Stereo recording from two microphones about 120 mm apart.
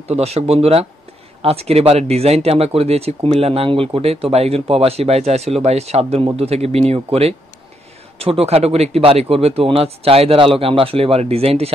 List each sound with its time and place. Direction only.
0.1 s speech: 60° right (ahead or behind)